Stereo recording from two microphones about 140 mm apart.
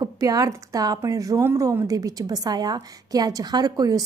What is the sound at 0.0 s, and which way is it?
A woman's voice, 25° right (ahead or behind).